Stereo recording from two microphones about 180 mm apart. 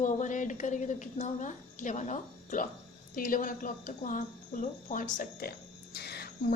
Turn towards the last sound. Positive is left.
turn(degrees=65)  # may be behind; listen again after turning